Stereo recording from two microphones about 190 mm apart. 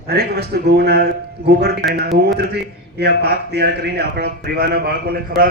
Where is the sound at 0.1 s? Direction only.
60° right (ahead or behind).